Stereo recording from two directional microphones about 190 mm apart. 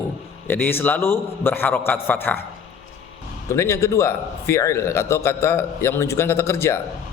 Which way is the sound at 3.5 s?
15° left (ahead or behind).